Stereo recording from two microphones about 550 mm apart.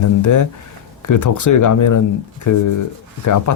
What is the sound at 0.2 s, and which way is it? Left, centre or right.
Speech, left.